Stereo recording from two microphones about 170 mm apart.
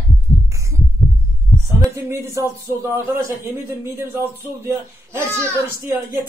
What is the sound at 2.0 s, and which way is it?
Speech, 15° right (ahead or behind).